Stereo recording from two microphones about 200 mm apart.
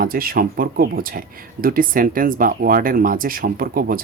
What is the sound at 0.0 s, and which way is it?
Speech, 45° right (ahead or behind).